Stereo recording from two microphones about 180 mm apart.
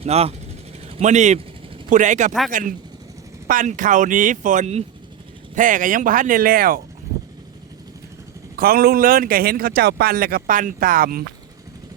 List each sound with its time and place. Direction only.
0.0 s speech: 35° right (ahead or behind); by 6.8 s 55° right (ahead or behind)
8.5 s a man's voice: 55° right (ahead or behind)